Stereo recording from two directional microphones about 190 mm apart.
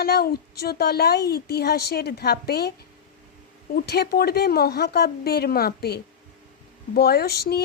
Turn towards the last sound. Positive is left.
turn(degrees=55)  # may be behind; listen again after turning